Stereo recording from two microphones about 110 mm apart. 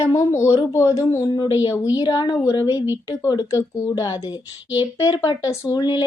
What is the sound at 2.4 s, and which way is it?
A woman's voice, 30° left (ahead or behind).